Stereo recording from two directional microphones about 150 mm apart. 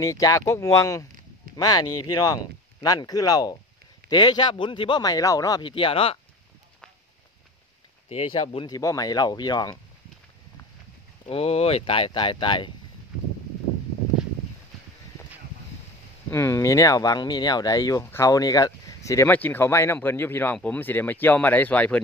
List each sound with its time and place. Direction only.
0.0 s speech: 20° left (ahead or behind); by 6.1 s 35° left (ahead or behind)
8.1 s speech: 40° left (ahead or behind)
8.6 s speech: 25° left (ahead or behind)
11.2 s speech: 40° left (ahead or behind)
16.3 s speech: 20° left (ahead or behind)